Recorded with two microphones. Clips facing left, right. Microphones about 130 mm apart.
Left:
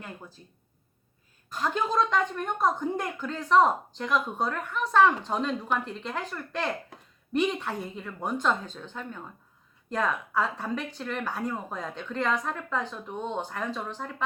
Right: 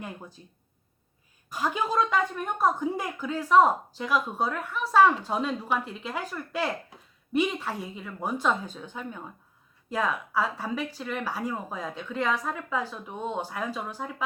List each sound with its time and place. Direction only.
0.0 s speech: 15° right (ahead or behind)
1.5 s a woman's voice: 10° right (ahead or behind)